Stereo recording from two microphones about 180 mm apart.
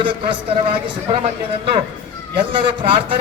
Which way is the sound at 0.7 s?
30° right (ahead or behind).